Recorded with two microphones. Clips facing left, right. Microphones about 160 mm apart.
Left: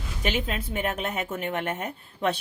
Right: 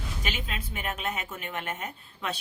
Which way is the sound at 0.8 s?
55° left (ahead or behind).